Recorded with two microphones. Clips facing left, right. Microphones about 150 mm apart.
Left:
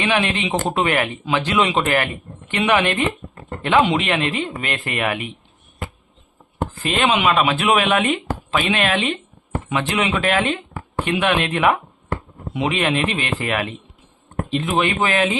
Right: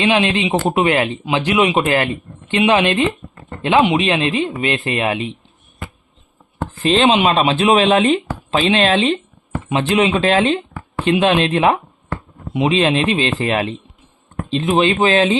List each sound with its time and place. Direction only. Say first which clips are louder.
0.0 s speech: right 4 dB; 20° right (ahead or behind)
6.8 s speech: right 5 dB; 30° right (ahead or behind)